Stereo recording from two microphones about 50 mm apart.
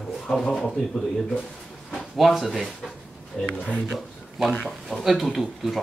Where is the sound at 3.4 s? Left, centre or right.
Centre.